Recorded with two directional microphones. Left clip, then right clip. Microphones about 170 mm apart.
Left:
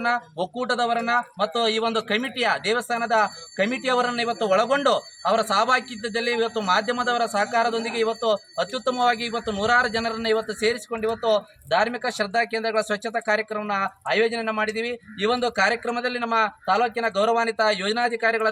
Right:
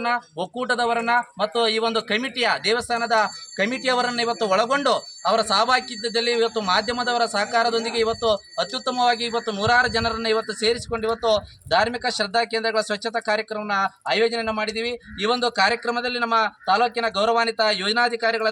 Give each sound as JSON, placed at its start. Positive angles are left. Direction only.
{"t": 0.0, "sound": "a man's voice", "side_deg": 0}
{"t": 16.3, "sound": "a man's voice", "side_deg": 15}